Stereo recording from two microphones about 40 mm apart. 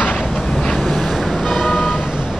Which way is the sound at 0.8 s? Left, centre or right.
Centre.